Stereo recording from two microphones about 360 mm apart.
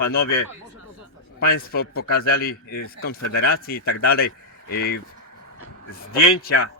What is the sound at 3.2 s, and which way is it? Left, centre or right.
Speech, left.